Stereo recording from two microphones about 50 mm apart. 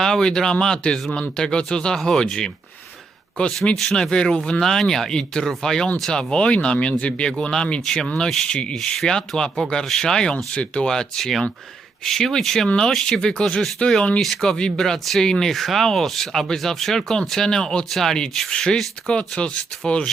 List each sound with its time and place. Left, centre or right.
0.0 s speech: centre
3.4 s speech: left
3.8 s speech: centre
8.8 s speech: centre
10.3 s speech: left
12.9 s speech: centre
13.1 s speech: centre
14.2 s speech: centre